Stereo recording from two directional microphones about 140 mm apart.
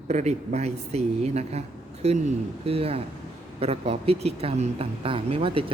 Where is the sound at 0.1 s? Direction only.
50° right (ahead or behind).